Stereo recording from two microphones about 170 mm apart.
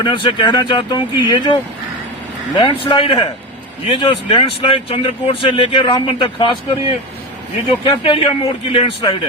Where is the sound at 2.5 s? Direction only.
30° left (ahead or behind).